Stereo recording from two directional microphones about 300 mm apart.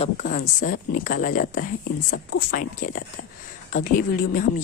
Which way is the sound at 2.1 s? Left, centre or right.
Left.